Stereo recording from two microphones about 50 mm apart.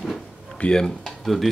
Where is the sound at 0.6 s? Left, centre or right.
Centre.